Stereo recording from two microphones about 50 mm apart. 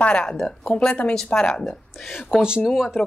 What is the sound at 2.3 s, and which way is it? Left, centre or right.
Speech, centre.